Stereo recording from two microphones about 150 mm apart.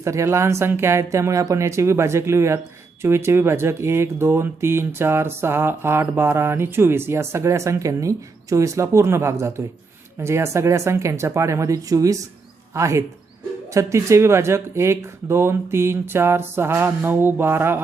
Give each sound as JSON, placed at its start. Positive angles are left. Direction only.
{"t": 0.0, "sound": "speech", "side_deg": -20}